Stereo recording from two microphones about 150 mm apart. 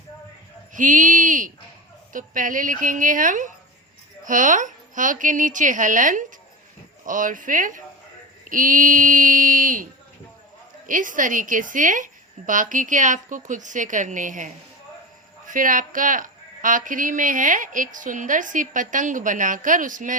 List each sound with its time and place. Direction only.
0.7 s speech: 60° right (ahead or behind)
10.8 s speech: 60° right (ahead or behind)